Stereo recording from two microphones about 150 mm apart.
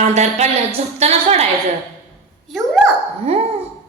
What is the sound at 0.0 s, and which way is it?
A woman's voice, 50° right (ahead or behind).